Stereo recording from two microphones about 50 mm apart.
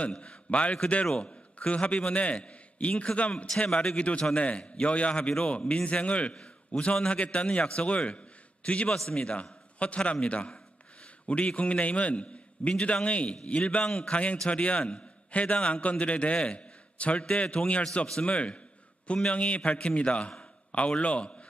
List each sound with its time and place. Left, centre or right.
0.1 s a man's voice: left